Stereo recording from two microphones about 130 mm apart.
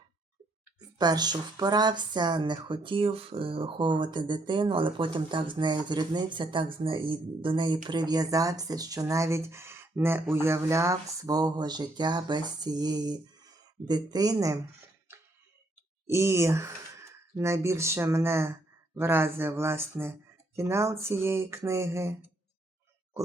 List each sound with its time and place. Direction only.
0.9 s speech: 30° right (ahead or behind)
16.0 s speech: 20° right (ahead or behind)